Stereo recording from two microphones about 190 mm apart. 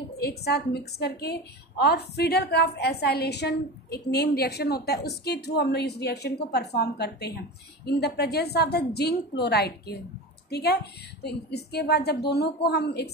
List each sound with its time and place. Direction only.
0.2 s a woman's voice: 55° left (ahead or behind)